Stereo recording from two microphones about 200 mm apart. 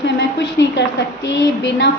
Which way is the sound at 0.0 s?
60° left (ahead or behind).